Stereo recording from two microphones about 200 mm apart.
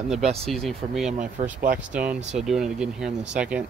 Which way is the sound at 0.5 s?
Centre (ahead or behind).